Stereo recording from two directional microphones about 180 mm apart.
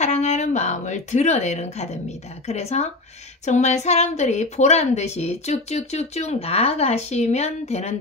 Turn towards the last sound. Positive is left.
turn(degrees=35)  # may be behind; listen again after turning